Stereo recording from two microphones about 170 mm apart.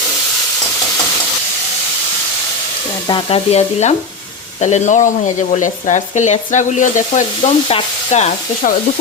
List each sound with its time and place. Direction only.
3.1 s stir: 30° left (ahead or behind)
4.6 s speech: 45° left (ahead or behind)
7.7 s stir: 40° left (ahead or behind)